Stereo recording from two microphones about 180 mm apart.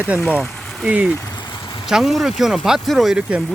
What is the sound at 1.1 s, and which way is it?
Vehicle, 20° left (ahead or behind).